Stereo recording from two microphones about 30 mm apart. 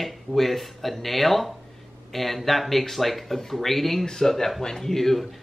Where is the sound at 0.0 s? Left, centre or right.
Centre.